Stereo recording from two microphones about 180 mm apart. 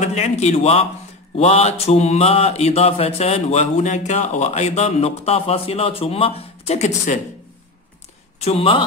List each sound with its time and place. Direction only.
0.0 s mantra: 35° left (ahead or behind)
8.4 s mantra: 35° left (ahead or behind)